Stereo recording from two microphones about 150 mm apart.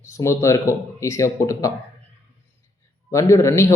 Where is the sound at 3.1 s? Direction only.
20° left (ahead or behind).